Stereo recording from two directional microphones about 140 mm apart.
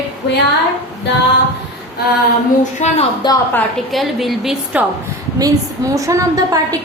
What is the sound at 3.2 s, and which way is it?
Speech, 30° left (ahead or behind).